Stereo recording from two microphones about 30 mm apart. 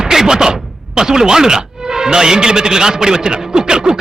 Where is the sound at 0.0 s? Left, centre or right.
Centre.